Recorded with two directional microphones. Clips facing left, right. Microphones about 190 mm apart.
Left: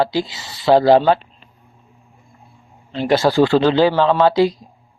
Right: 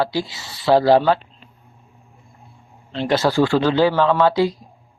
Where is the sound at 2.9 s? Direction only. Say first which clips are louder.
Left 3 dB; 10° left (ahead or behind).